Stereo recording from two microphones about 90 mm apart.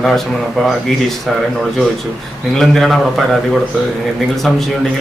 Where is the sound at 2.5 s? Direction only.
Centre (ahead or behind).